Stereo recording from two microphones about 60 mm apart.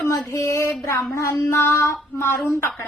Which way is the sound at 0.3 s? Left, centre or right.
Left.